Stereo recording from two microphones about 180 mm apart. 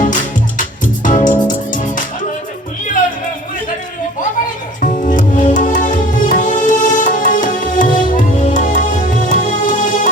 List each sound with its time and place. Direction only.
0.0 s music: 45° left (ahead or behind)
4.8 s music: 45° left (ahead or behind)